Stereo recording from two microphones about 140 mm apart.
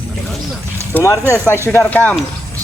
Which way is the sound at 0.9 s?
20° left (ahead or behind).